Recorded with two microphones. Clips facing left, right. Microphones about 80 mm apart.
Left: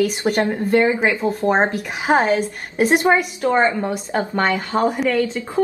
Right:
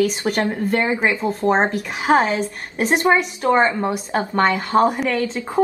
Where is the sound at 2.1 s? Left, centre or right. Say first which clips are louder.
Right 1 dB; centre.